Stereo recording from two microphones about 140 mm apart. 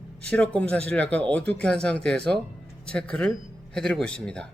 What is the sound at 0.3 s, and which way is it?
Speech, 10° left (ahead or behind).